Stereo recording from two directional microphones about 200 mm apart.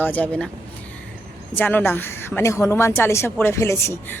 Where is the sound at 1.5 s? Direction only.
10° left (ahead or behind).